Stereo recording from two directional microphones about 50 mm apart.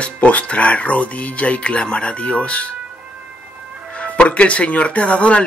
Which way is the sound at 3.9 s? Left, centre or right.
Left.